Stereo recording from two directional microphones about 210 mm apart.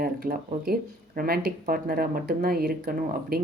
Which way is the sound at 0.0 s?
45° right (ahead or behind).